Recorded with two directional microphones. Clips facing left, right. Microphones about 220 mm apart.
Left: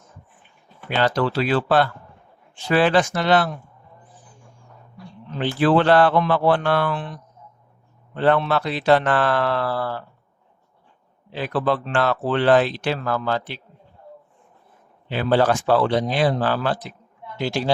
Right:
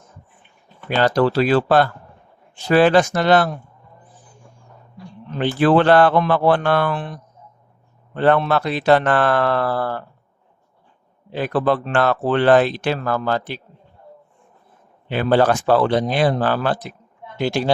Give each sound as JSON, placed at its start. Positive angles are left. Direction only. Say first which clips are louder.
{"t": 0.9, "sound": "speech", "louder": "right 4 dB", "side_deg": -40}
{"t": 5.4, "sound": "speech", "louder": "right 3 dB", "side_deg": -50}
{"t": 8.1, "sound": "speech", "louder": "right 2 dB", "side_deg": -50}
{"t": 11.3, "sound": "speech", "louder": "right 3 dB", "side_deg": -50}
{"t": 15.1, "sound": "speech", "louder": "right 2 dB", "side_deg": -55}